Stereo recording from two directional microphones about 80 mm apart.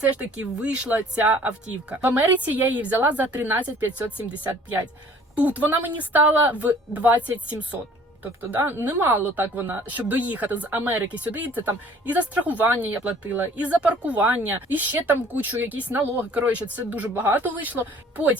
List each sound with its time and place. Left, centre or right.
0.0 s speech: centre
8.2 s speech: right